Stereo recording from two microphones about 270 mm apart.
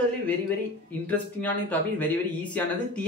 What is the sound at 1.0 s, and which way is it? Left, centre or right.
Speech, centre.